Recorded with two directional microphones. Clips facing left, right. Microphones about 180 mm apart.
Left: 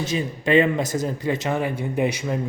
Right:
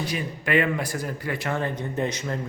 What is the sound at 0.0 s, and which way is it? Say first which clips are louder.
Speech: left 5 dB; 25° left (ahead or behind).